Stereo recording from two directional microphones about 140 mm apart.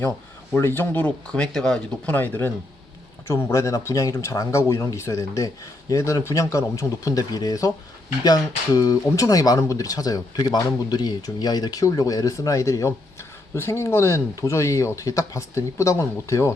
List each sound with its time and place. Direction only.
0.5 s speech: 15° left (ahead or behind)